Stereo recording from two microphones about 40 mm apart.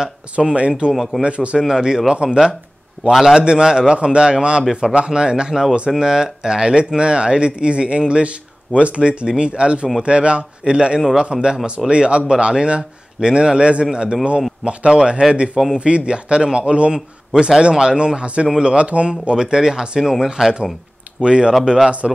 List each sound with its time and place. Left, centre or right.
0.0 s speech: centre
1.7 s speech: centre
3.3 s a man's voice: right
22.0 s speech: centre